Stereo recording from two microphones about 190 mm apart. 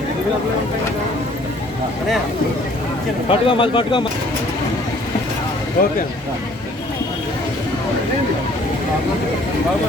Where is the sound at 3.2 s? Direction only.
25° left (ahead or behind).